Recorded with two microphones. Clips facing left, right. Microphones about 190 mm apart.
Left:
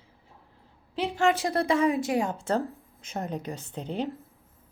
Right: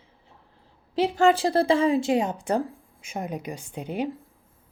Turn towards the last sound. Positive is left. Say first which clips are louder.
# right 2 dB
turn(degrees=-10)  # may be behind; listen again after turning